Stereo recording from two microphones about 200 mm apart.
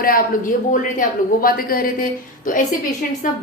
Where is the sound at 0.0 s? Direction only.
45° left (ahead or behind).